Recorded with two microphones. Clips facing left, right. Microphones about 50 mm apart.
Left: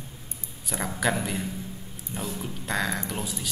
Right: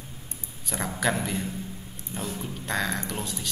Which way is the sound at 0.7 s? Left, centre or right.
Centre.